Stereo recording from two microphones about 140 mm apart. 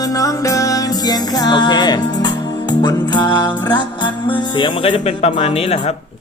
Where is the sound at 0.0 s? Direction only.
25° left (ahead or behind).